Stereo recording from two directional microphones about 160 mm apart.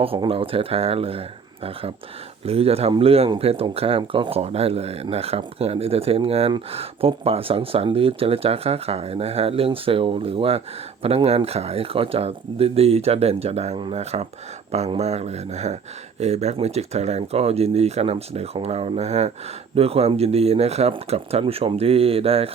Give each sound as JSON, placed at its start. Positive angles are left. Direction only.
{"t": 0.0, "sound": "speech", "side_deg": -35}
{"t": 2.4, "sound": "speech", "side_deg": -40}